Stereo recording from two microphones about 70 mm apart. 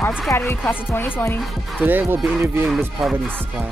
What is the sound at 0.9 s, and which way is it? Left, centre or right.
Speech, left.